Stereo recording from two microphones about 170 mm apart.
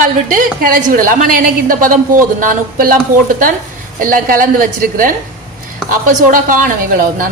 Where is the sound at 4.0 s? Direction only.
55° right (ahead or behind).